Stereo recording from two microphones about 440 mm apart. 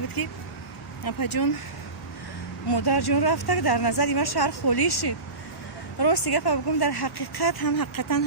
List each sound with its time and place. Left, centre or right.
0.2 s speech: left
2.6 s speech: left